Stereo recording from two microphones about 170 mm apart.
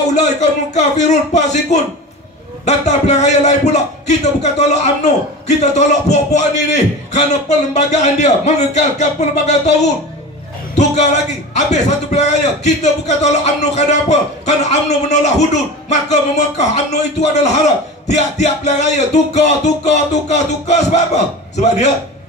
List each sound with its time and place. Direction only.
0.1 s a man's voice: 40° left (ahead or behind)
11.5 s a man's voice: 45° left (ahead or behind)